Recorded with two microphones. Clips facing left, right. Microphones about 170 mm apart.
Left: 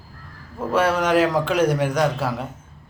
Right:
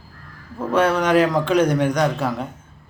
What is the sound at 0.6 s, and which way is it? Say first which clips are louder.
A man's voice: right 2 dB; 5° left (ahead or behind).